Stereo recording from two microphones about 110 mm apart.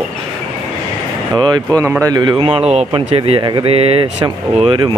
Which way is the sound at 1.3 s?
40° right (ahead or behind).